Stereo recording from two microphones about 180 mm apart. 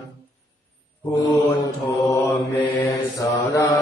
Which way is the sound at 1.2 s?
15° left (ahead or behind).